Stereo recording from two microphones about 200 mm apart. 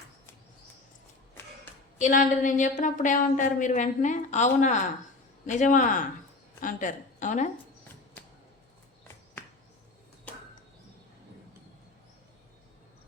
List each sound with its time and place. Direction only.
2.0 s a woman's voice: 40° left (ahead or behind)